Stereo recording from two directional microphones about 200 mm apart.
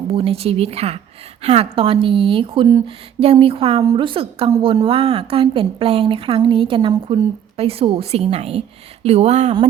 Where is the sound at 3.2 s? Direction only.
30° right (ahead or behind).